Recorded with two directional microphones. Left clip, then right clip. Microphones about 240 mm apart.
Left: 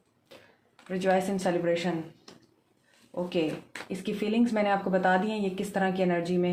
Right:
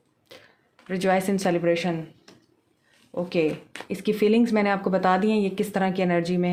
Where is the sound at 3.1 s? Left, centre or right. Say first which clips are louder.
Right 5 dB; right.